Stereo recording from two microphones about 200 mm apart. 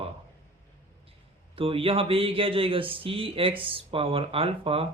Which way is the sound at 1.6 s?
25° right (ahead or behind).